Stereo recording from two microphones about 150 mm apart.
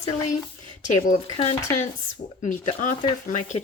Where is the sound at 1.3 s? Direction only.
40° left (ahead or behind).